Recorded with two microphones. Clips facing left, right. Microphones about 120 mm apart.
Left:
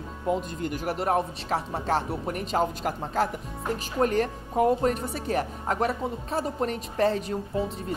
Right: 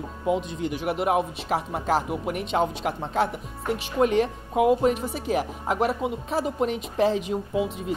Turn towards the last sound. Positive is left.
turn(degrees=-5)  # may be behind; listen again after turning